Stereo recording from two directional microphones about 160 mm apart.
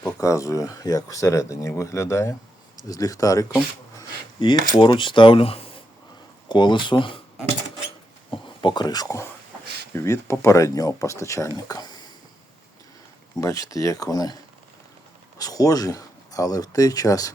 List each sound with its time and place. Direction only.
0.0 s speech: 20° left (ahead or behind)
8.6 s speech: 25° left (ahead or behind)
13.4 s speech: 20° left (ahead or behind)
15.4 s speech: 25° left (ahead or behind)